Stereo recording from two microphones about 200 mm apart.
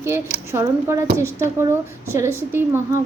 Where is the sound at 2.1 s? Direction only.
15° right (ahead or behind).